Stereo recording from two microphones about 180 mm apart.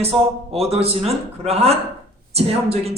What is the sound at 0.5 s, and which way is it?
Speech, 35° right (ahead or behind).